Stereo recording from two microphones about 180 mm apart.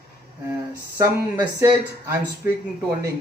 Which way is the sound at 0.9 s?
15° right (ahead or behind).